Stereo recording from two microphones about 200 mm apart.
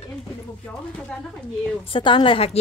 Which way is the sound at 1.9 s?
25° left (ahead or behind).